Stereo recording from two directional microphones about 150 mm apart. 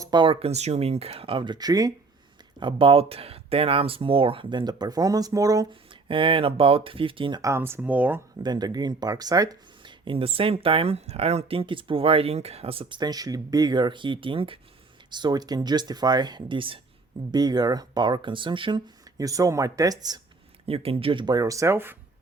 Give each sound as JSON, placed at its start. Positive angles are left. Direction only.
{"t": 0.0, "sound": "speech", "side_deg": -30}
{"t": 5.9, "sound": "speech", "side_deg": -35}
{"t": 8.4, "sound": "speech", "side_deg": -25}
{"t": 20.7, "sound": "speech", "side_deg": -40}